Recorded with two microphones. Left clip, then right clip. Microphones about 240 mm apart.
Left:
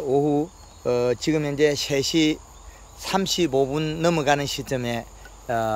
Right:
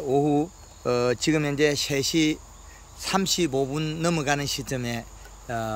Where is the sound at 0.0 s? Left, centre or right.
Centre.